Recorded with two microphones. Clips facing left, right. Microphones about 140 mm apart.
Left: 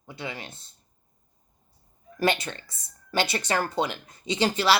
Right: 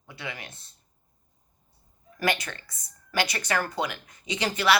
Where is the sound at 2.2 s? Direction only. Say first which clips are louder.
Left 3 dB; 30° left (ahead or behind).